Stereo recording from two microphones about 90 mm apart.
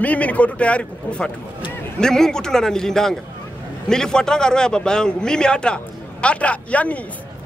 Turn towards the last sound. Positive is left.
turn(degrees=15)  # may be behind; listen again after turning